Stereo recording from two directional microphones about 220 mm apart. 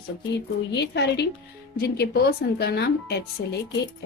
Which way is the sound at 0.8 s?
50° left (ahead or behind).